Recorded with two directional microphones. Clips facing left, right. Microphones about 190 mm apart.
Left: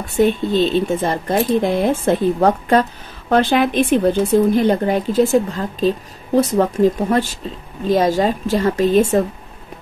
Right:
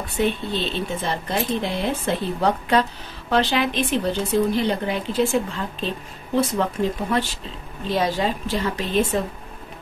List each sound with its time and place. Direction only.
0.1 s a woman's voice: 45° left (ahead or behind)